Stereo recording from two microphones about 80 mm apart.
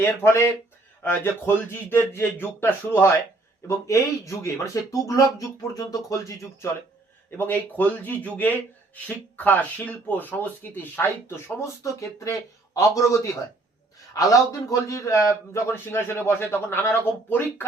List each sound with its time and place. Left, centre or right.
0.0 s a man's voice: left
7.3 s a man's voice: left